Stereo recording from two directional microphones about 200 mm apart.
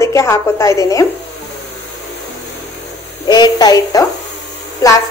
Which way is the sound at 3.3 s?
20° left (ahead or behind).